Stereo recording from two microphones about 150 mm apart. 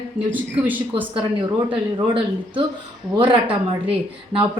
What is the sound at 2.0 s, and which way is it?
A woman's voice, 35° right (ahead or behind).